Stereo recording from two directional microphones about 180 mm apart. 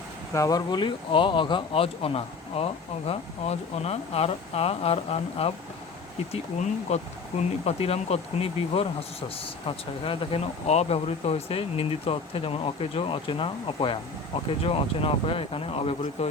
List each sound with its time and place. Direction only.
0.3 s speech: 20° left (ahead or behind)